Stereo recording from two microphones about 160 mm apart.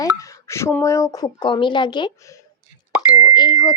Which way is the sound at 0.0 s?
20° left (ahead or behind).